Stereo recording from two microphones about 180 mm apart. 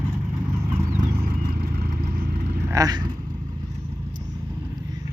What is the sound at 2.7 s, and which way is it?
Speech, 20° right (ahead or behind).